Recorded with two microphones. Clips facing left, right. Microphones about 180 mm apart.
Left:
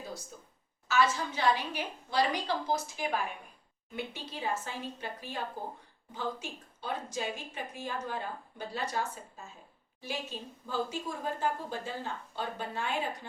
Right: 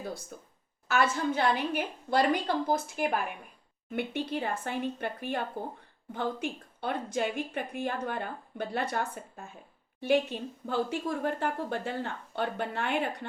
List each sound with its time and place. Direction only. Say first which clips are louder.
0.3 s a woman's voice: right 4 dB; 60° right (ahead or behind)